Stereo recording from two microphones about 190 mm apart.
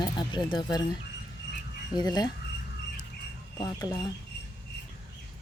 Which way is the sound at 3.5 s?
20° left (ahead or behind).